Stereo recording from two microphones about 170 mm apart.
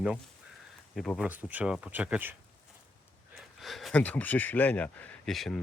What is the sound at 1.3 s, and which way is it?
Speech, 10° right (ahead or behind).